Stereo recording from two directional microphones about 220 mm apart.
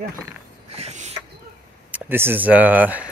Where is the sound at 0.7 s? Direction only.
30° right (ahead or behind).